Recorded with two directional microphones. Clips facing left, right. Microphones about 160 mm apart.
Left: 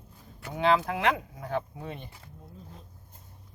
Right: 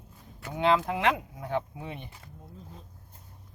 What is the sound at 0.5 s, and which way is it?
Speech, 20° right (ahead or behind).